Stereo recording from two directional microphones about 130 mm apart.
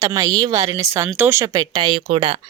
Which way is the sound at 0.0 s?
25° right (ahead or behind).